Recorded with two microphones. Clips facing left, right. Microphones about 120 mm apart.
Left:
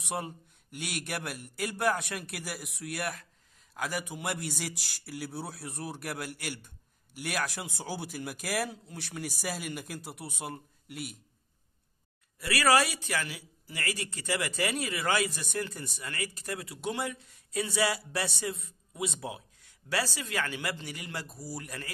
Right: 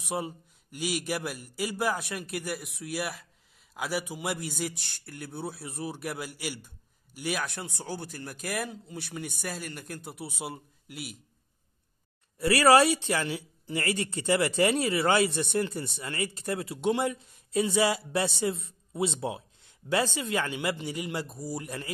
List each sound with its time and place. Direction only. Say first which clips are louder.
0.0 s speech: right 3 dB; centre (ahead or behind)
12.4 s speech: right 5 dB; 30° right (ahead or behind)